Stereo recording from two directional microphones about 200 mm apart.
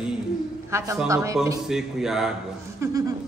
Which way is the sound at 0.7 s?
15° right (ahead or behind).